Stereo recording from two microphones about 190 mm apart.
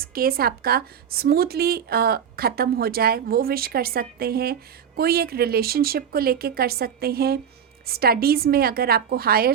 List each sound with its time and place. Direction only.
0.0 s speech: 50° right (ahead or behind)